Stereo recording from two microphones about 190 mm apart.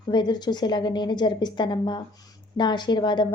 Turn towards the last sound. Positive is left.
turn(degrees=25)  # may be behind; listen again after turning